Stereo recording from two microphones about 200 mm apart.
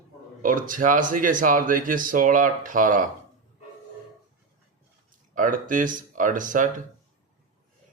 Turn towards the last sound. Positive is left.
turn(degrees=-40)  # may be behind; listen again after turning